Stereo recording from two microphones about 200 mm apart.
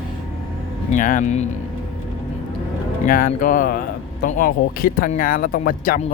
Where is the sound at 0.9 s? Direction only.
40° left (ahead or behind).